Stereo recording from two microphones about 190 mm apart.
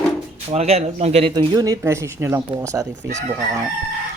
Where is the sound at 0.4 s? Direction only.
35° right (ahead or behind).